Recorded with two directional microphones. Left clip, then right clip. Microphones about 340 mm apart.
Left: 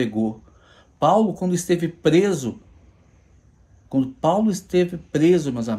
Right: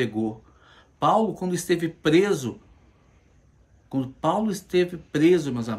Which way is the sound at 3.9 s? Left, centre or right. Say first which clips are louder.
Left 5 dB; centre.